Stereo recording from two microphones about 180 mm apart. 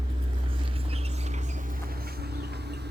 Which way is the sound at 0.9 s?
35° right (ahead or behind).